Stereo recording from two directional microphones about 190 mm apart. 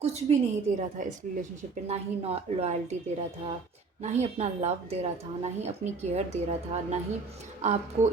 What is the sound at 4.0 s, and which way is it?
Speech, 35° right (ahead or behind).